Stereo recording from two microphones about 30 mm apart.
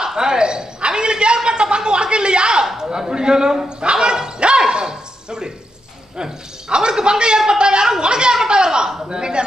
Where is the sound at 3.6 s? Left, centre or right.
Right.